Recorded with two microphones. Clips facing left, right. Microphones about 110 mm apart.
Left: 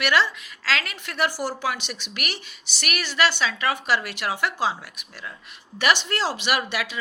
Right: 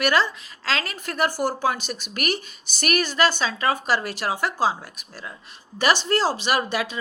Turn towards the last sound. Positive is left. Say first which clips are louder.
# right 2 dB
turn(degrees=-35)  # may be behind; listen again after turning